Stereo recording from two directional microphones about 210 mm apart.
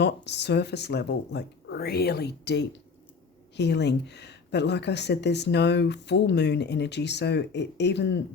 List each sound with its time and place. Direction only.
0.0 s speech: 55° left (ahead or behind)